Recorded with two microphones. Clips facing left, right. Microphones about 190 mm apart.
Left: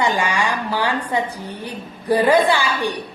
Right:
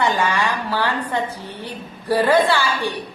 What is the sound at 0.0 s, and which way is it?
Speech, 15° left (ahead or behind).